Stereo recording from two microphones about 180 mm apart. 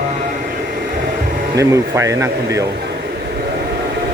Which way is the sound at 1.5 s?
15° right (ahead or behind).